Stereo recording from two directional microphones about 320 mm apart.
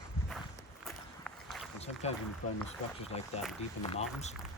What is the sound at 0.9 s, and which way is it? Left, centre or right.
Run, centre.